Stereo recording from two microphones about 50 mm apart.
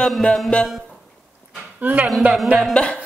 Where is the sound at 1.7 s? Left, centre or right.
Right.